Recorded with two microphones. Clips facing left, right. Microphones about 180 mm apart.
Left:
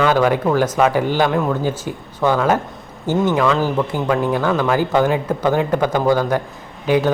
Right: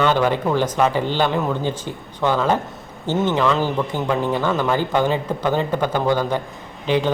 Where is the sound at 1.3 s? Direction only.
Centre (ahead or behind).